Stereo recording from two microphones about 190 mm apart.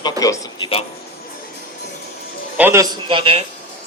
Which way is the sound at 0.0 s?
20° left (ahead or behind).